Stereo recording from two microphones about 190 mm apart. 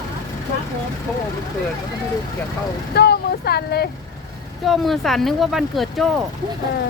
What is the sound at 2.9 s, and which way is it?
Speech, 60° left (ahead or behind).